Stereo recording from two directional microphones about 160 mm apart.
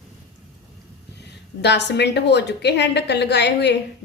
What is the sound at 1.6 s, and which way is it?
A woman's voice, 90° left.